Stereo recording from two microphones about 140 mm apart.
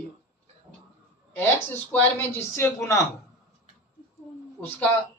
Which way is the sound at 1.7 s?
15° left (ahead or behind).